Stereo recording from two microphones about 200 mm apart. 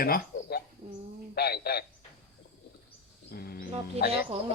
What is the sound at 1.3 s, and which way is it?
Speech, 55° left (ahead or behind).